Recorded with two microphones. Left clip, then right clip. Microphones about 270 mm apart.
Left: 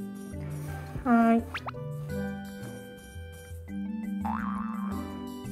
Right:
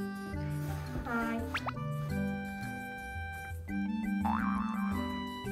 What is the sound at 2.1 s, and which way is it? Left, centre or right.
Music, centre.